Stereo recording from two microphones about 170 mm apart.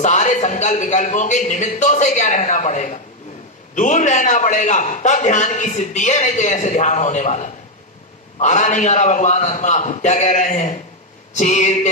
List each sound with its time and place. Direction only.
0.0 s a man's voice: 45° left (ahead or behind)